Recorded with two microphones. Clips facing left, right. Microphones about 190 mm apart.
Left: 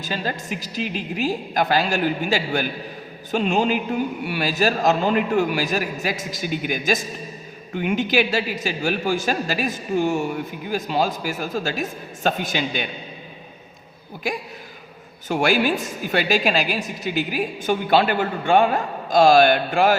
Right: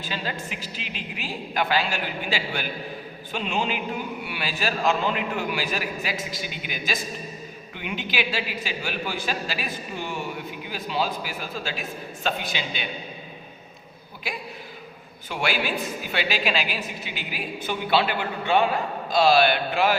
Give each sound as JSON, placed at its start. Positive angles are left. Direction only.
{"t": 0.0, "sound": "a woman's voice", "side_deg": 45}
{"t": 14.3, "sound": "a woman's voice", "side_deg": 45}